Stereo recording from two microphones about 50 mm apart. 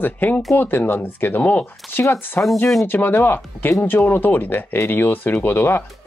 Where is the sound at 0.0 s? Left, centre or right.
Left.